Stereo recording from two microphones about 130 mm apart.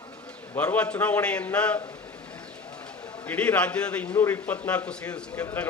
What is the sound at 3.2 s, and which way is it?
A man's voice, 10° left (ahead or behind).